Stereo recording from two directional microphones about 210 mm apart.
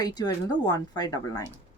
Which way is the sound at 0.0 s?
20° left (ahead or behind).